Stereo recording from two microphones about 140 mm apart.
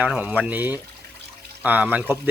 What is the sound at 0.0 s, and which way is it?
Speech, 10° right (ahead or behind).